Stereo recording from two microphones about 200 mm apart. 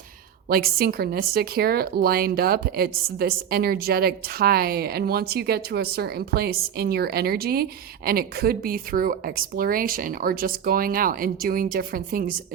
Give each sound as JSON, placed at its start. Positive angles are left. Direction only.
{"t": 0.4, "sound": "a woman's voice", "side_deg": -50}